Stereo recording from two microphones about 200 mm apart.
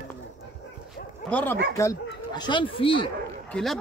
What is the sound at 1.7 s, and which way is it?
Speech, 20° left (ahead or behind).